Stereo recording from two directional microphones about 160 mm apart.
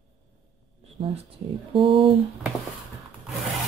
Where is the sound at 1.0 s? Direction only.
40° right (ahead or behind).